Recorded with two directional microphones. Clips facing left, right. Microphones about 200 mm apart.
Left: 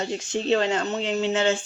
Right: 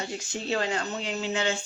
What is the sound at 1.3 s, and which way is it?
Speech, 45° left (ahead or behind).